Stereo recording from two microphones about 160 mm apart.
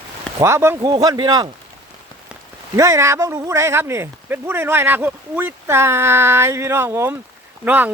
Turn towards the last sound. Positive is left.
turn(degrees=-10)  # may be behind; listen again after turning